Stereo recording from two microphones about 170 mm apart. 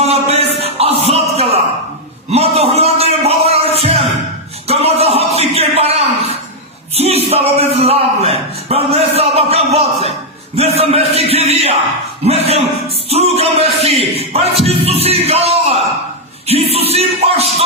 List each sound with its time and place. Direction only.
0.0 s a sound: 40° right (ahead or behind)
3.8 s music: 35° right (ahead or behind)
4.7 s a sound: 35° right (ahead or behind)
6.9 s a man's voice: 35° right (ahead or behind)
10.5 s music: 35° right (ahead or behind)
15.0 s speech: 35° right (ahead or behind)
16.5 s music: 35° right (ahead or behind)